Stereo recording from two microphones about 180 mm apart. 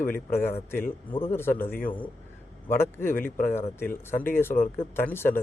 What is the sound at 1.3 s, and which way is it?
Speech, 10° left (ahead or behind).